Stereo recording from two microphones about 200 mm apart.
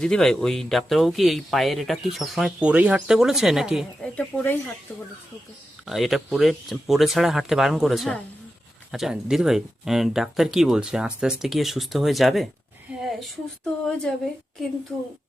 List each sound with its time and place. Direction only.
0.0 s speech: centre (ahead or behind)
5.8 s speech: centre (ahead or behind)